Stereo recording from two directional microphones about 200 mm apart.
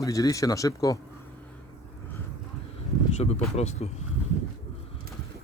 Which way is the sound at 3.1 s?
35° left (ahead or behind).